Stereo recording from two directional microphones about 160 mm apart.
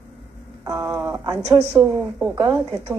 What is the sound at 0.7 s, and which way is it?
Speech, 20° right (ahead or behind).